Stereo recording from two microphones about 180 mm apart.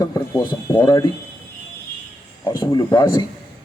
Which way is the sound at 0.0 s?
20° left (ahead or behind).